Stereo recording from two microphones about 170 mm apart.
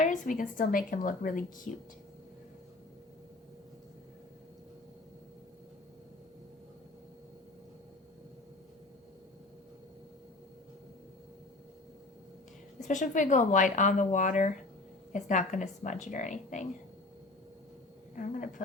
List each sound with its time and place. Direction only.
0.0 s a woman's voice: 50° left (ahead or behind)
12.9 s a woman's voice: 45° left (ahead or behind)
18.2 s a woman's voice: 50° left (ahead or behind)